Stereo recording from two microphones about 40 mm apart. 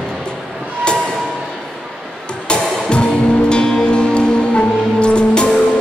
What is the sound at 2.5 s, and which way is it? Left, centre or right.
Music, left.